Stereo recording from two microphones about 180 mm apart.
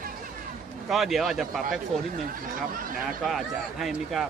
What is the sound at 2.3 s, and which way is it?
Speech, 50° right (ahead or behind).